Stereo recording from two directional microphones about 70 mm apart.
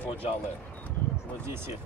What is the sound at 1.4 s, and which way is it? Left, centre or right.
Speech, right.